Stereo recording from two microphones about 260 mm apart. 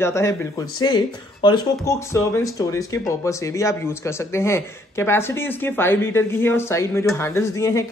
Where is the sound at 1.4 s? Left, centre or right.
Centre.